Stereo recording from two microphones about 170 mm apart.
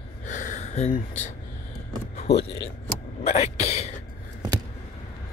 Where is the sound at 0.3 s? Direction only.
50° left (ahead or behind).